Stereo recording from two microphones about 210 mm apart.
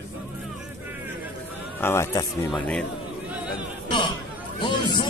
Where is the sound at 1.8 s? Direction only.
10° left (ahead or behind).